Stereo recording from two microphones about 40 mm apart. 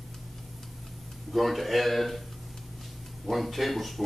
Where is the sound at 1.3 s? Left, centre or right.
Centre.